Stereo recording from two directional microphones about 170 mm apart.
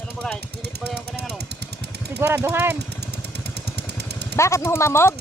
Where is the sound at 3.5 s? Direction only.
75° right (ahead or behind).